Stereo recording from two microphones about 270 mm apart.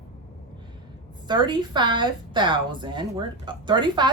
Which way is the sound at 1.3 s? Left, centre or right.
Centre.